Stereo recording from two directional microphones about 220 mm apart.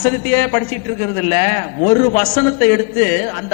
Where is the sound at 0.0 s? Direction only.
15° left (ahead or behind).